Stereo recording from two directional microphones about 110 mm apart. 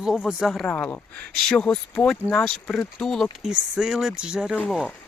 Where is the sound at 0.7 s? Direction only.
15° left (ahead or behind).